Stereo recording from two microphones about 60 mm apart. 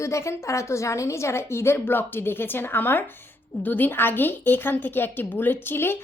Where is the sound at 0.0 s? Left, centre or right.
Left.